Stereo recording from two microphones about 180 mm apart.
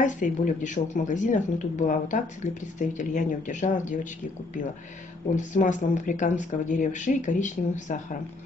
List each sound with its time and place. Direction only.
0.0 s speech: 45° left (ahead or behind)
5.3 s speech: 45° left (ahead or behind)